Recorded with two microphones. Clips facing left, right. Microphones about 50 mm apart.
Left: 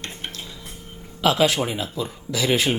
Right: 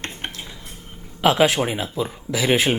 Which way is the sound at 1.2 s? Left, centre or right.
Right.